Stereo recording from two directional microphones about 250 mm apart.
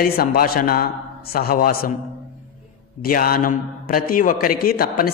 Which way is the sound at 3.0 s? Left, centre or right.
Left.